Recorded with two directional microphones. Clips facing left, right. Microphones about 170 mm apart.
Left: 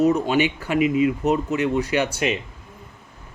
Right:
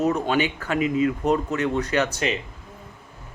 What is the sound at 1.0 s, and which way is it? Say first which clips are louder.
Speech: left 1 dB; 10° left (ahead or behind).